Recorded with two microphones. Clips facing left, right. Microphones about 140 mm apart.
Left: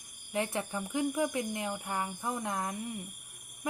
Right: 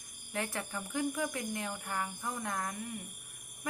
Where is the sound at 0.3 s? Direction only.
20° left (ahead or behind).